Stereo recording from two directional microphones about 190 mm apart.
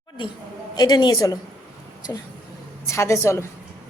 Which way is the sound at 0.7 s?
20° left (ahead or behind).